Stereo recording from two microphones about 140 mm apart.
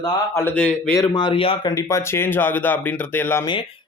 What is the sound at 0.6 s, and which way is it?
Speech, 5° left (ahead or behind).